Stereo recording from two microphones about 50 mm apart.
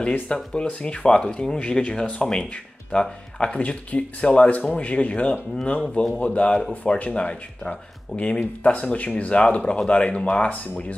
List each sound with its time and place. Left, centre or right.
0.0 s speech: left
3.5 s speech: left